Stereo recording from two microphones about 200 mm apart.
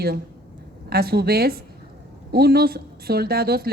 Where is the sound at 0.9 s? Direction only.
50° right (ahead or behind).